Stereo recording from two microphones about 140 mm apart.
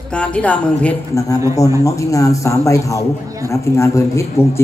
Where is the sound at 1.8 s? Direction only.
20° left (ahead or behind).